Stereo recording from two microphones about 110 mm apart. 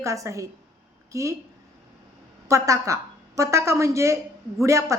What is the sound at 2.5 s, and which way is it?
A woman's voice, 30° right (ahead or behind).